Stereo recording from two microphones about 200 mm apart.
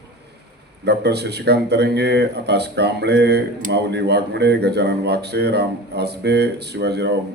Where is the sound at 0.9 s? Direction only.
55° right (ahead or behind).